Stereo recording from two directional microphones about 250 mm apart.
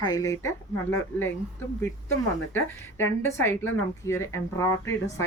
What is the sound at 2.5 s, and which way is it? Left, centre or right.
A woman's voice, centre.